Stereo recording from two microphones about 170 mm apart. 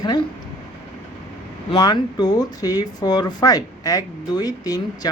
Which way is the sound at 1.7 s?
25° left (ahead or behind).